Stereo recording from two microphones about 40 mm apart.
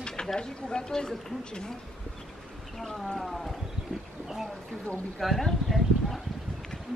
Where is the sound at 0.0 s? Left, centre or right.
Left.